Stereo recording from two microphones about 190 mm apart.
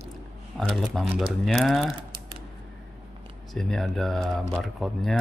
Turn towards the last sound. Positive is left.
turn(degrees=0)  # may be behind; listen again after turning